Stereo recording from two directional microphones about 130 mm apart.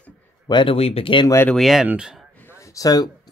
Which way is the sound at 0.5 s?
35° left (ahead or behind).